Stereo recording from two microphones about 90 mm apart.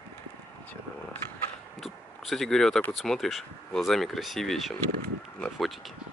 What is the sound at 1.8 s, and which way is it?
Speech, centre (ahead or behind).